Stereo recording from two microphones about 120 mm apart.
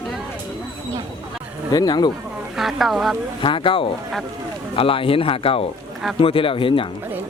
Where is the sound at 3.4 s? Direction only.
45° left (ahead or behind).